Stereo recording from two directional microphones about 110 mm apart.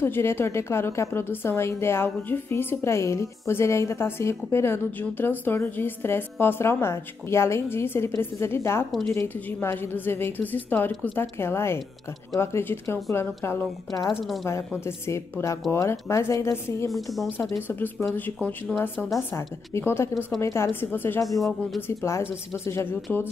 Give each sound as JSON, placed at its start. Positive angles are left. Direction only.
{"t": 0.0, "sound": "a woman's voice", "side_deg": 20}
{"t": 14.9, "sound": "a woman's voice", "side_deg": 25}
{"t": 16.9, "sound": "speech", "side_deg": 0}
{"t": 17.4, "sound": "a woman's voice", "side_deg": 20}
{"t": 19.1, "sound": "a woman's voice", "side_deg": 25}
{"t": 21.4, "sound": "speech", "side_deg": 0}
{"t": 21.8, "sound": "a woman's voice", "side_deg": 25}
{"t": 23.1, "sound": "speech", "side_deg": 15}